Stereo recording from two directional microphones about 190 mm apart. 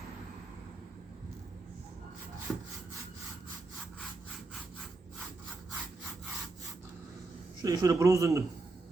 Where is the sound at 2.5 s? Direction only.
5° left (ahead or behind).